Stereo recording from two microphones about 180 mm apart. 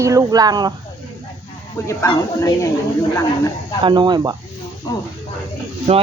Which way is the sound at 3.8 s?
25° right (ahead or behind).